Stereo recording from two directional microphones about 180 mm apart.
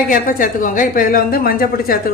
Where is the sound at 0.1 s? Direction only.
50° left (ahead or behind).